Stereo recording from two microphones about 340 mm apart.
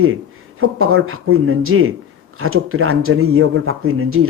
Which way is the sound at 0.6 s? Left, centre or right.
Right.